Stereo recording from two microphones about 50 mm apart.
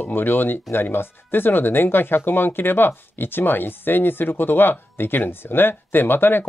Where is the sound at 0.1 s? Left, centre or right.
Left.